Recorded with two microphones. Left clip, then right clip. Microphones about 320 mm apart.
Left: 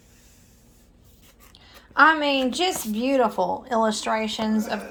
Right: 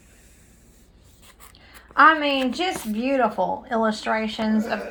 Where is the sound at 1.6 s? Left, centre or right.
Centre.